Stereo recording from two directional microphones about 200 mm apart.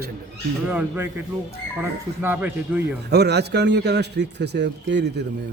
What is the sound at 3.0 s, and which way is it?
A man's voice, 55° right (ahead or behind).